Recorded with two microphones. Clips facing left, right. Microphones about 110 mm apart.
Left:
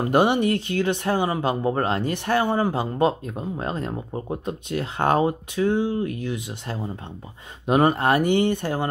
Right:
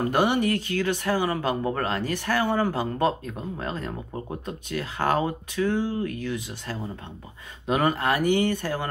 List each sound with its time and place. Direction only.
0.0 s speech: 20° left (ahead or behind)